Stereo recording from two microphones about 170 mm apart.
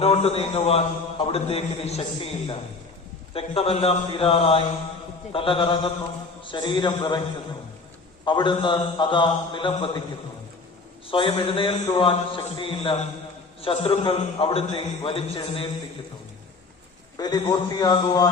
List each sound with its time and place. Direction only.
0.0 s a man's voice: 35° left (ahead or behind)
8.2 s a man's voice: 25° left (ahead or behind)
11.1 s a man's voice: 30° left (ahead or behind)
17.2 s a man's voice: 25° left (ahead or behind)